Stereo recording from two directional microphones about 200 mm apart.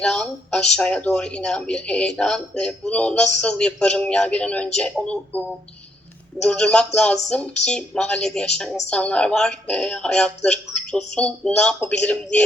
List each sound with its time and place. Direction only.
0.0 s speech: 5° left (ahead or behind)
6.4 s speech: 5° left (ahead or behind)